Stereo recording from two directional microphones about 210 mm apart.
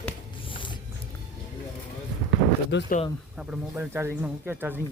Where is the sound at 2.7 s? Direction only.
60° left (ahead or behind).